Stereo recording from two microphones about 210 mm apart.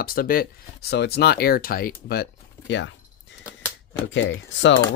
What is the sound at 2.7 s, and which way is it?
Speech, 60° left (ahead or behind).